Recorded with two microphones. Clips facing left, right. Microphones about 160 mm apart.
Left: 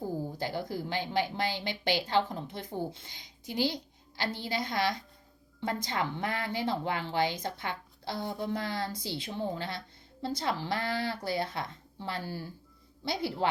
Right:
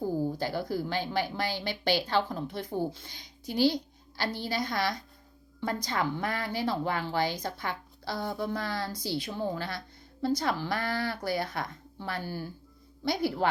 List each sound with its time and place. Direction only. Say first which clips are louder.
0.3 s a woman's voice: right 3 dB; 20° left (ahead or behind)